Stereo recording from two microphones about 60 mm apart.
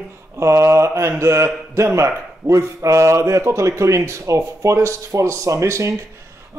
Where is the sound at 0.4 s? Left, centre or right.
Right.